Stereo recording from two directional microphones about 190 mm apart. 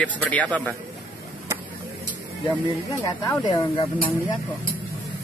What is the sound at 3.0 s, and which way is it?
Speech, 20° left (ahead or behind).